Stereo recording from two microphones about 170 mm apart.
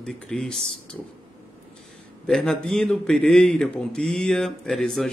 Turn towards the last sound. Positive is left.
turn(degrees=0)  # may be behind; listen again after turning